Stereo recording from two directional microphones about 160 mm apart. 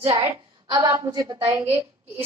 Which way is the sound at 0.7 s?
20° right (ahead or behind).